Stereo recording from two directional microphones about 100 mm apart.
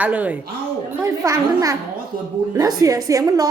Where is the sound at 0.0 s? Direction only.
15° right (ahead or behind).